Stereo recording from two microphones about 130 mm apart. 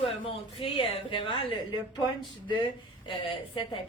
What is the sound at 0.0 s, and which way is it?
Speech, 45° left (ahead or behind).